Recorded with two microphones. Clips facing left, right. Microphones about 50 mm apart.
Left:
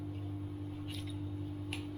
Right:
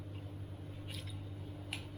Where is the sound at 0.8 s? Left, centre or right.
Centre.